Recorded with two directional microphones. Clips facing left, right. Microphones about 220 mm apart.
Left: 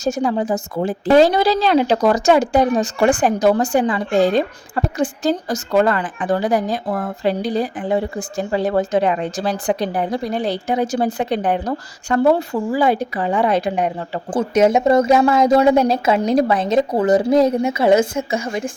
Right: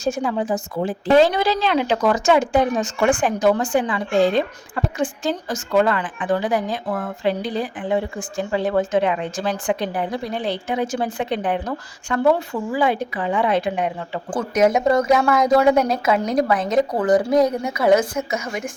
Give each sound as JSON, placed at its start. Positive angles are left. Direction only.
{"t": 0.0, "sound": "speech", "side_deg": 40}
{"t": 14.3, "sound": "a woman's voice", "side_deg": 25}